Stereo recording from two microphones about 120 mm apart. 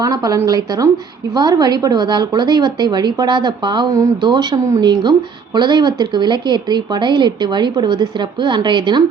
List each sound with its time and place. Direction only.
0.0 s a woman's voice: 30° right (ahead or behind)